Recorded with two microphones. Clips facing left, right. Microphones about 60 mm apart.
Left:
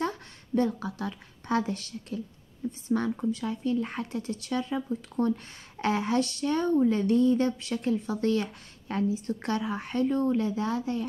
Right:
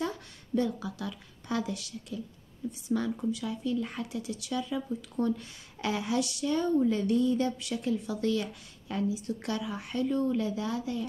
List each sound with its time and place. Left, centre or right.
0.6 s speech: left